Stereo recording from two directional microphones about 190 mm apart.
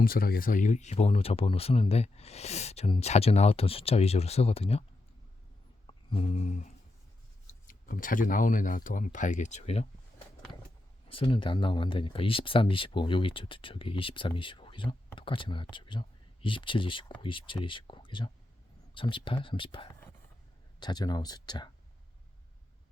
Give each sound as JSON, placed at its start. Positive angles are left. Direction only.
{"t": 0.0, "sound": "speech", "side_deg": 50}
{"t": 6.1, "sound": "speech", "side_deg": 35}
{"t": 11.2, "sound": "speech", "side_deg": 25}